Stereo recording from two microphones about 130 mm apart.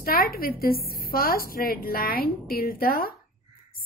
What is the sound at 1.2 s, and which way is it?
A woman's voice, 90° left.